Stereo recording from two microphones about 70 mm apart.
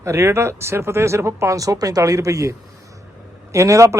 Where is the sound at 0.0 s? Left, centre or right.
Right.